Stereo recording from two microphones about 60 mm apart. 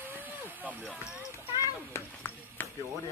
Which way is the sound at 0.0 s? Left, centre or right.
Right.